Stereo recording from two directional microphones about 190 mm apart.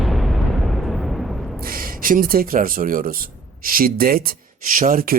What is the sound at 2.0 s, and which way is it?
Speech, 45° right (ahead or behind).